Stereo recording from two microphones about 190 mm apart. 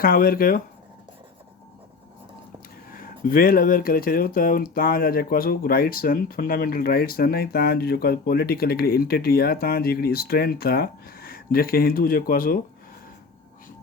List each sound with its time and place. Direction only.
0.0 s speech: 50° left (ahead or behind)
2.9 s speech: 50° left (ahead or behind)